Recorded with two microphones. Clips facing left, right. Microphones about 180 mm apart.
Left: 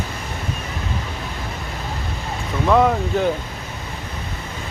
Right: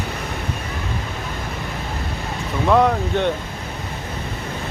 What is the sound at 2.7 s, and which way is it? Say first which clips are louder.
Speech: even; centre (ahead or behind).